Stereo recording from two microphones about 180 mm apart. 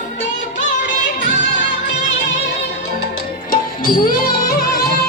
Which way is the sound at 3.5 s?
50° left (ahead or behind).